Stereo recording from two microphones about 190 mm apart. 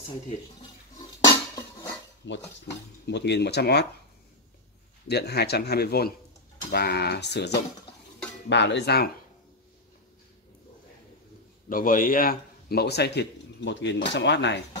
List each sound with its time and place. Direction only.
1.2 s dishes: 20° left (ahead or behind)
2.2 s dishes: 75° left (ahead or behind)
3.1 s speech: 65° left (ahead or behind)
5.0 s speech: 60° left (ahead or behind)
11.7 s speech: 45° left (ahead or behind); by 14.6 s 65° left (ahead or behind)